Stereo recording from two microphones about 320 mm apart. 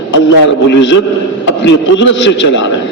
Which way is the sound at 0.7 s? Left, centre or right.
Left.